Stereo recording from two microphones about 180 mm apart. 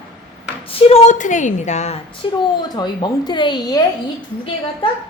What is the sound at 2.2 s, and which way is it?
Speech, 25° left (ahead or behind).